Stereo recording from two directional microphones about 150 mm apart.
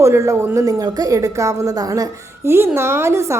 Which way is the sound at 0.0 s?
20° right (ahead or behind).